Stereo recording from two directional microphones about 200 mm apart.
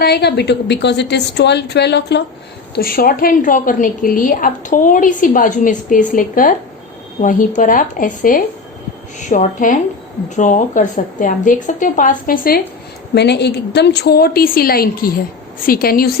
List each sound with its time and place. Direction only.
0.0 s a woman's voice: 55° left (ahead or behind)
13.1 s a woman's voice: 55° left (ahead or behind)